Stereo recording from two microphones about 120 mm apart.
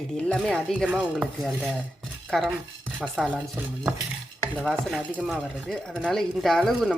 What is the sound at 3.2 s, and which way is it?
Speech, 10° right (ahead or behind).